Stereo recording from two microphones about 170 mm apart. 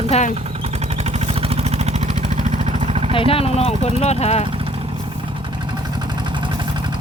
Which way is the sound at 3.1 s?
35° left (ahead or behind).